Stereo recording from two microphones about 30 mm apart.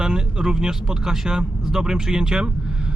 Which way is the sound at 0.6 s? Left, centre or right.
Right.